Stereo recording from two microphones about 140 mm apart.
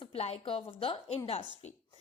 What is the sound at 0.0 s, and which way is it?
A woman's voice, 45° left (ahead or behind).